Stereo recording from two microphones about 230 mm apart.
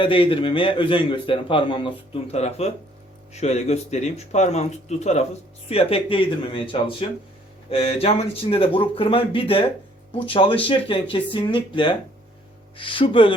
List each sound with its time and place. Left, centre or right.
0.0 s a man's voice: left